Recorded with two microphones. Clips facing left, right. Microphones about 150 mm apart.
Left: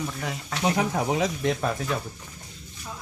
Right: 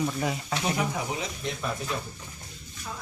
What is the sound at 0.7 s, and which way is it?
Speech, 90° left.